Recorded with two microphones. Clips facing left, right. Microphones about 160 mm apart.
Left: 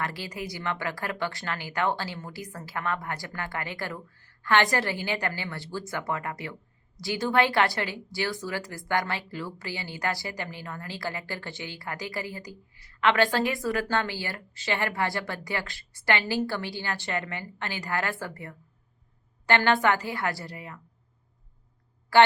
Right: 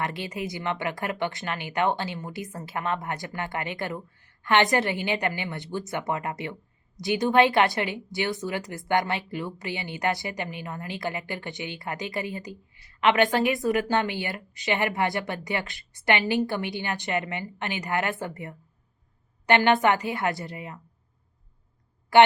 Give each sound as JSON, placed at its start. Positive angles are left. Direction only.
{"t": 0.0, "sound": "a woman's voice", "side_deg": -20}
{"t": 22.1, "sound": "a woman's voice", "side_deg": -20}